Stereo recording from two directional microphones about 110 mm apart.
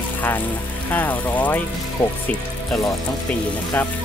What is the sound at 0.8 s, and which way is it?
Speech, 15° left (ahead or behind).